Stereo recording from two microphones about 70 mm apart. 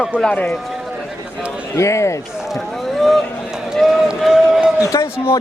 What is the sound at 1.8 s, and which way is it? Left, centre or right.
Speech, left.